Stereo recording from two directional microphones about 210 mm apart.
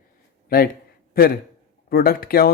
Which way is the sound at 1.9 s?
45° left (ahead or behind).